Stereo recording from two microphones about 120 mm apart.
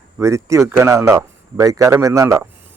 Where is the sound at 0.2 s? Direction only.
25° right (ahead or behind).